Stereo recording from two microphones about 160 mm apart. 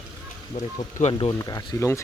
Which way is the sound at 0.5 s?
50° left (ahead or behind).